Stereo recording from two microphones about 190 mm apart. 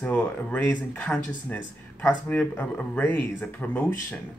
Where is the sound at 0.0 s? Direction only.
10° left (ahead or behind).